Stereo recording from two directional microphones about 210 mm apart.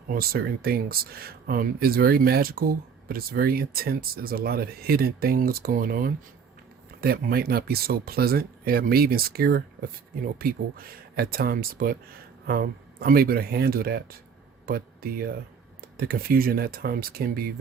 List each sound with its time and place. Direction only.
0.1 s speech: 45° right (ahead or behind)